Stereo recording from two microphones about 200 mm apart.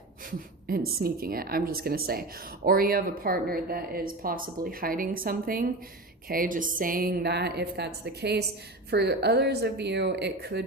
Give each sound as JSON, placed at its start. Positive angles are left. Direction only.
{"t": 0.7, "sound": "a woman's voice", "side_deg": -45}